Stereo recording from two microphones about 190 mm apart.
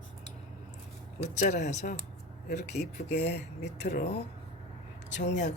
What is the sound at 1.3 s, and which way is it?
Speech, 40° left (ahead or behind).